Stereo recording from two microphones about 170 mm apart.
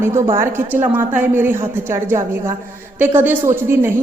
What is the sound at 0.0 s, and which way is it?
Speech, 15° right (ahead or behind).